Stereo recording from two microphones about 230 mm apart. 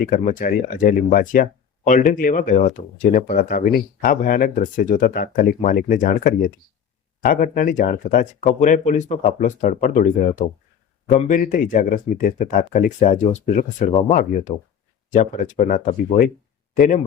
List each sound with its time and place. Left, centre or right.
0.0 s speech: left